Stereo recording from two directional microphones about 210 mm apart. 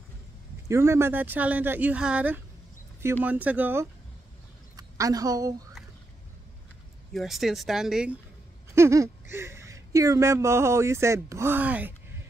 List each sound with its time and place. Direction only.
0.7 s a woman's voice: 10° right (ahead or behind)
7.1 s speech: centre (ahead or behind)